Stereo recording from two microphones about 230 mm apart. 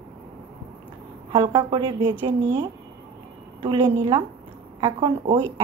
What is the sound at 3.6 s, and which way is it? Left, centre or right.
A woman's voice, centre.